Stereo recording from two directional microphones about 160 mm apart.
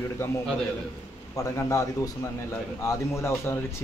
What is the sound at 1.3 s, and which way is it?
A man's voice, 20° left (ahead or behind).